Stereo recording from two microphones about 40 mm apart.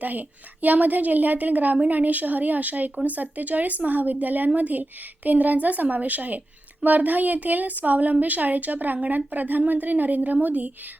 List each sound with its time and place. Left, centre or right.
0.0 s a woman's voice: right